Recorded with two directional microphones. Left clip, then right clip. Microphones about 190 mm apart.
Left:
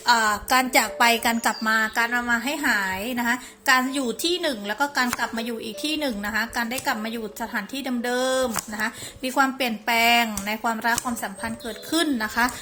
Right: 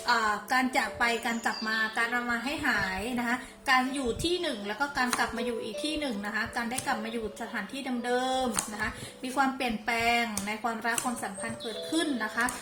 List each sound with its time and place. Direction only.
0.0 s a woman's voice: 40° left (ahead or behind)